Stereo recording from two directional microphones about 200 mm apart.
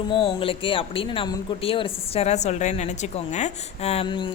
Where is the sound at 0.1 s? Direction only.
25° left (ahead or behind).